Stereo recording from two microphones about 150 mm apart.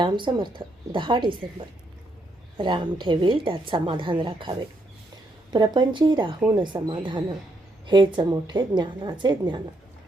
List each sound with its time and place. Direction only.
0.0 s a woman's voice: 30° right (ahead or behind)